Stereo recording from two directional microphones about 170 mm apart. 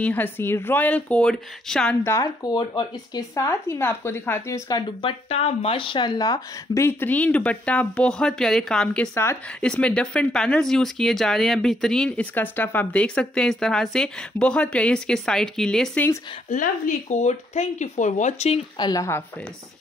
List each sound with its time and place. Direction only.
0.0 s speech: 10° left (ahead or behind)
2.0 s speech: 20° left (ahead or behind); by 9.1 s 5° left (ahead or behind)
9.1 s speech: 15° left (ahead or behind)
16.4 s speech: 50° left (ahead or behind)
18.8 s speech: 20° left (ahead or behind)